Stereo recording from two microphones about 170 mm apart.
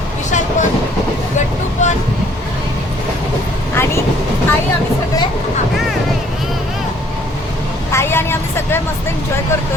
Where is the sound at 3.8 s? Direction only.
15° left (ahead or behind).